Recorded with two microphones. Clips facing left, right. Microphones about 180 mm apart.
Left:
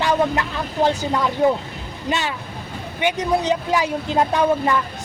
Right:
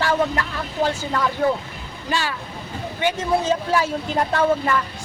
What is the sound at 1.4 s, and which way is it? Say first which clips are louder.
Speech: left 3 dB; 20° left (ahead or behind).